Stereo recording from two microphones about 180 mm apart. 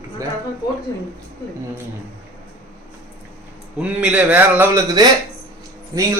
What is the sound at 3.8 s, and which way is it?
Speech, 5° right (ahead or behind).